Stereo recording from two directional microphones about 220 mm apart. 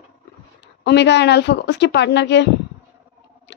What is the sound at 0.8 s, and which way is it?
A woman's voice, 50° left (ahead or behind).